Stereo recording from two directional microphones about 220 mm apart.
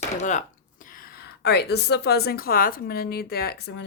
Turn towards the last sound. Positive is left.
turn(degrees=50)  # may be behind; listen again after turning